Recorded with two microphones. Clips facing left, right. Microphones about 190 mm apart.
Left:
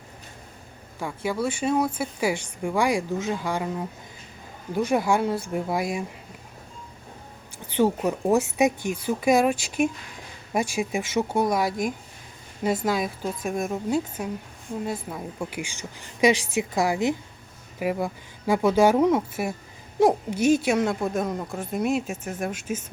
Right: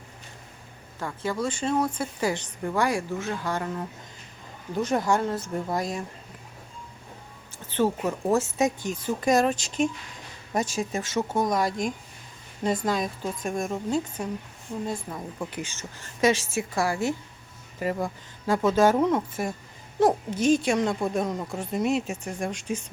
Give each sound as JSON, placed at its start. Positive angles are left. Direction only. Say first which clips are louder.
{"t": 0.9, "sound": "speech", "louder": "left 2 dB", "side_deg": 10}
{"t": 7.7, "sound": "speech", "louder": "left 3 dB", "side_deg": 15}